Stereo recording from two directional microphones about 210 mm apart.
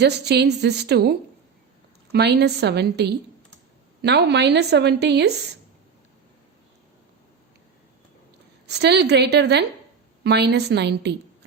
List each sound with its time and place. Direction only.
0.0 s a woman's voice: 50° right (ahead or behind)
2.1 s a woman's voice: 50° right (ahead or behind)
8.6 s a woman's voice: 55° right (ahead or behind)